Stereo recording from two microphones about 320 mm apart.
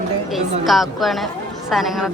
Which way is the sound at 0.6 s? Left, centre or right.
Centre.